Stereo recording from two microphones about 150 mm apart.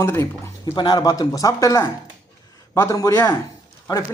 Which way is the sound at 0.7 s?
30° left (ahead or behind).